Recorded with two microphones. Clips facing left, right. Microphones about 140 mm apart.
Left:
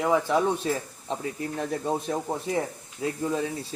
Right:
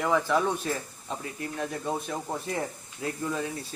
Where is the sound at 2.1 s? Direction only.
15° left (ahead or behind).